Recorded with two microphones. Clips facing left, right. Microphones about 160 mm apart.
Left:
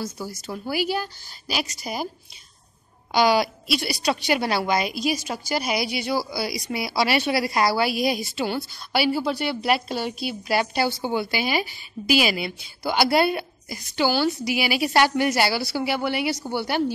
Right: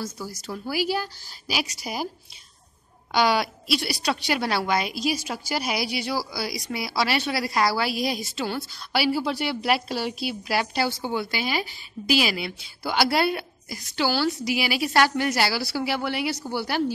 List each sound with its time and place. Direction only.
0.5 s speech: 5° right (ahead or behind)
3.1 s speech: centre (ahead or behind)
14.0 s a woman's voice: 20° left (ahead or behind)
14.5 s speech: centre (ahead or behind)